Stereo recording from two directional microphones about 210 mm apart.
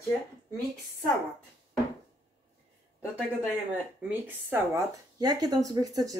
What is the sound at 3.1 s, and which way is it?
Speech, 5° right (ahead or behind).